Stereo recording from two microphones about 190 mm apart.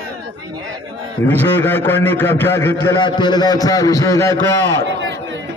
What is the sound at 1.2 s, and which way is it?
A man's voice, 10° left (ahead or behind).